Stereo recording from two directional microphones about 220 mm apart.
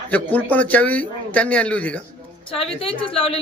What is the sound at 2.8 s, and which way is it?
Speech, 25° left (ahead or behind).